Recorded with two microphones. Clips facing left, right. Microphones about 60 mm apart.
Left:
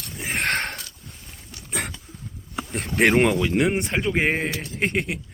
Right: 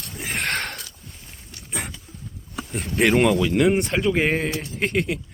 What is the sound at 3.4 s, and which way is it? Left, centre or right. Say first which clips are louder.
A man's voice: right 3 dB; left.